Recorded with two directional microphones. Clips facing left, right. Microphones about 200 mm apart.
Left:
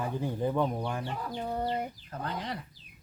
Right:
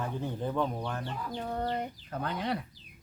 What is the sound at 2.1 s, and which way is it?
Speech, 60° right (ahead or behind).